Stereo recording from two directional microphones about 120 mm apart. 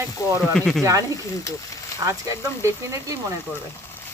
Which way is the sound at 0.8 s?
30° right (ahead or behind).